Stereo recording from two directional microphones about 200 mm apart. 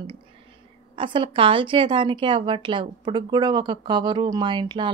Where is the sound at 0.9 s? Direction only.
25° right (ahead or behind).